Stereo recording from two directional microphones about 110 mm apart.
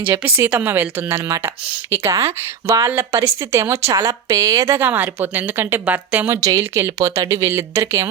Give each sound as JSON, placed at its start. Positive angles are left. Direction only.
{"t": 0.0, "sound": "speech", "side_deg": -15}
{"t": 6.4, "sound": "speech", "side_deg": -30}